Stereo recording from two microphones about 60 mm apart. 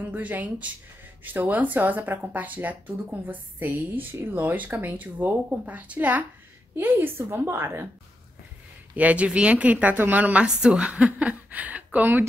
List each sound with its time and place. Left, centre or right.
0.0 s speech: right
6.8 s a woman's voice: right
8.9 s speech: right
10.4 s speech: centre; by 12.3 s right